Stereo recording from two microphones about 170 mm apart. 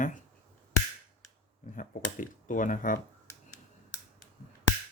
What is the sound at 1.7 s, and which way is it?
Finger snapping, 50° left (ahead or behind).